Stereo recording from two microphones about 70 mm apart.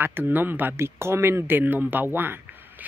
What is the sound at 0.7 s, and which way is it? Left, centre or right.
Speech, right.